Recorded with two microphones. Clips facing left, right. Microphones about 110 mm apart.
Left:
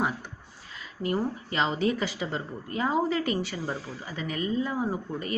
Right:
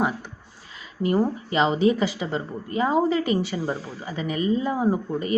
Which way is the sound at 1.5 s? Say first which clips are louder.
Right 6 dB; 10° right (ahead or behind).